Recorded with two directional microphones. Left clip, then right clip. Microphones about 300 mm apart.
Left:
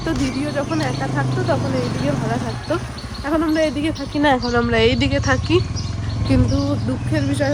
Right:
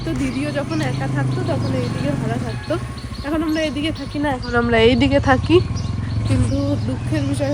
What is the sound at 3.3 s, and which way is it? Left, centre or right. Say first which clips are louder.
Speech: left 3 dB; centre.